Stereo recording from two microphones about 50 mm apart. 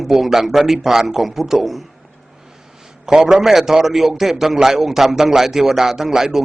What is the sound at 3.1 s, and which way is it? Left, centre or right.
A man's voice, centre.